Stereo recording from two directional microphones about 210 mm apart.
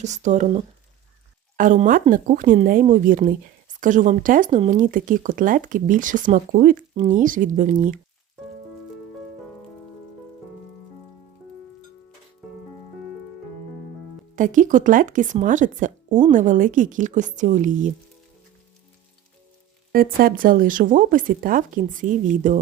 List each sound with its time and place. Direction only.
0.0 s speech: 35° right (ahead or behind)
14.3 s speech: 40° right (ahead or behind)
19.9 s speech: 45° right (ahead or behind)